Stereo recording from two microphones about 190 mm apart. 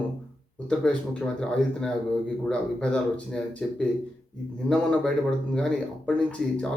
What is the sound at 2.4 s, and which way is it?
Speech, 5° left (ahead or behind).